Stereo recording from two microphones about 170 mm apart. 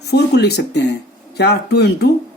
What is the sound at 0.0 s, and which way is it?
Speech, 75° left (ahead or behind).